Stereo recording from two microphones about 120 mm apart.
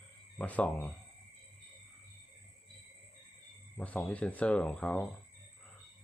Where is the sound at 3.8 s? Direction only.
10° left (ahead or behind).